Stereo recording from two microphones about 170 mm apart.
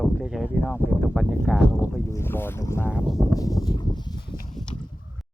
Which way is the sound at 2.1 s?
15° left (ahead or behind).